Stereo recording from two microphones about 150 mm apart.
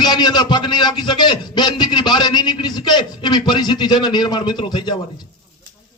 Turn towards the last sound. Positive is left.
turn(degrees=30)  # may be behind; listen again after turning